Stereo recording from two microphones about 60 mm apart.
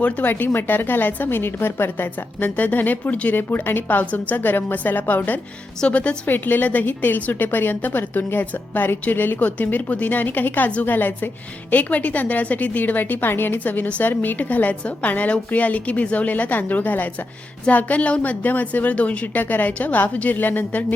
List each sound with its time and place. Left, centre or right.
0.0 s a woman's voice: left
6.3 s a woman's voice: left